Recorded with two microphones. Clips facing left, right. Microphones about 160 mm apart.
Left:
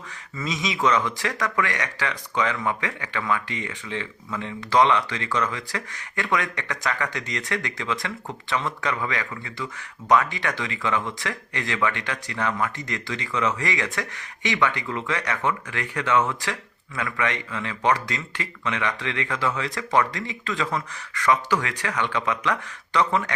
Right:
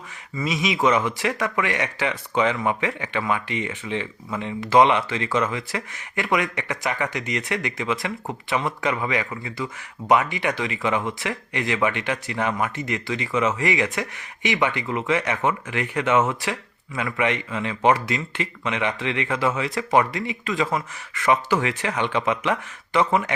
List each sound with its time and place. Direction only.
0.3 s speech: 20° right (ahead or behind)